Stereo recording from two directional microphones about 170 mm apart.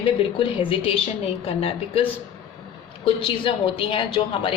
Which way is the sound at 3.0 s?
30° left (ahead or behind).